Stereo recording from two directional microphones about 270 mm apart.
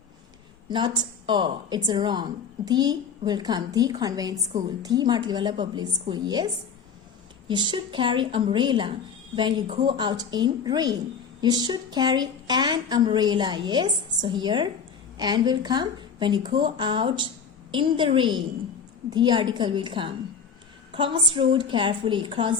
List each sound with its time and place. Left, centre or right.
0.7 s speech: centre